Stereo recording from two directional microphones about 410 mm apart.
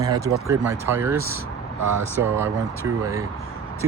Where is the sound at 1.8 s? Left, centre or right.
Right.